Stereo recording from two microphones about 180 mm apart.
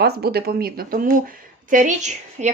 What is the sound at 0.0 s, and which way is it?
A woman's voice, 60° right (ahead or behind).